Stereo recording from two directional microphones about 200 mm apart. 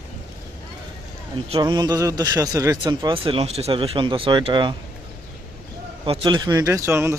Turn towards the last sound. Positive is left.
turn(degrees=-15)  # may be behind; listen again after turning